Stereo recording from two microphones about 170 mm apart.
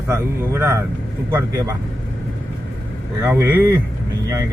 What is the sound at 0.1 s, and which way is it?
Speech, 15° right (ahead or behind).